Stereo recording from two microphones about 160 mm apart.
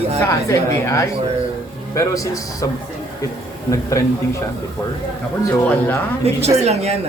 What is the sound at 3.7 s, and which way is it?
Speech, 20° left (ahead or behind).